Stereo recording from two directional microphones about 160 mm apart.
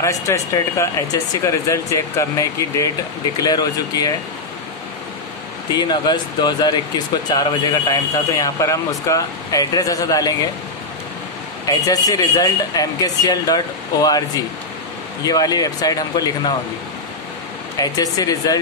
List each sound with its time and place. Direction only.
0.0 s speech: 20° left (ahead or behind)
5.7 s speech: 25° left (ahead or behind)
11.6 s speech: 20° left (ahead or behind)
17.7 s speech: 25° left (ahead or behind)